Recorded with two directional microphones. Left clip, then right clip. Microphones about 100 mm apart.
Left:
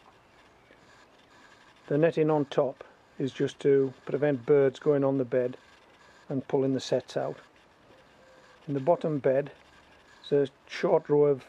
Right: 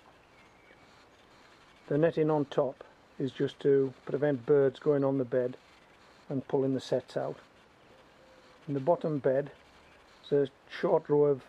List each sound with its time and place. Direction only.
1.9 s speech: 10° left (ahead or behind)
8.6 s speech: 20° left (ahead or behind)